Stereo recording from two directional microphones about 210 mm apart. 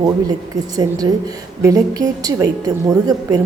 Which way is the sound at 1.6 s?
15° right (ahead or behind).